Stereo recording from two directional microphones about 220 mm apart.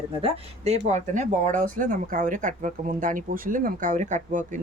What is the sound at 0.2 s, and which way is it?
Speech, 25° right (ahead or behind).